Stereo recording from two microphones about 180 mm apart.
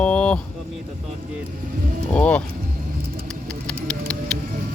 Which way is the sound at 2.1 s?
5° left (ahead or behind).